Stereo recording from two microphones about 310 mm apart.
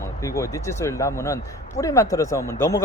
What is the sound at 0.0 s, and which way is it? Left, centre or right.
A man's voice, centre.